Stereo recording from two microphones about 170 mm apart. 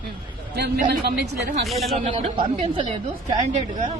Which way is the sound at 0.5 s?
70° right (ahead or behind).